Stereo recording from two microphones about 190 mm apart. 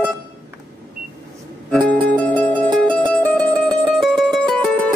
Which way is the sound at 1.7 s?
5° left (ahead or behind).